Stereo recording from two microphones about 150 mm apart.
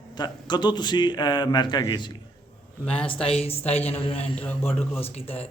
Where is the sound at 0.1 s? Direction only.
30° left (ahead or behind).